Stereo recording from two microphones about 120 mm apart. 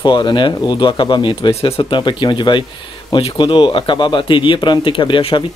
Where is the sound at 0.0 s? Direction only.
40° left (ahead or behind).